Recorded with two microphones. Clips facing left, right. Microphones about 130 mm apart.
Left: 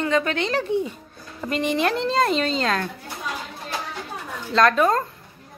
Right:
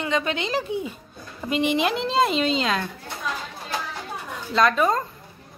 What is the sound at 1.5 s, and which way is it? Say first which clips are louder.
Speech: right 1 dB; 35° left (ahead or behind).